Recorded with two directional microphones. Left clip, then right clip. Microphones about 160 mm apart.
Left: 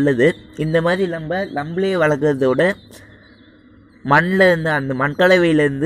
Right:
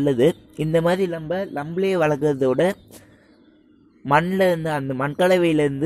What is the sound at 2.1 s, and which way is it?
Speech, 20° right (ahead or behind).